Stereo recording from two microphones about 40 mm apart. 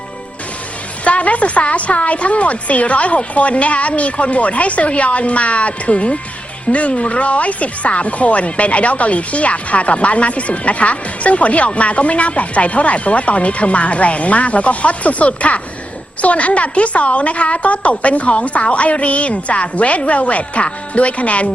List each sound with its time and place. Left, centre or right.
1.0 s speech: left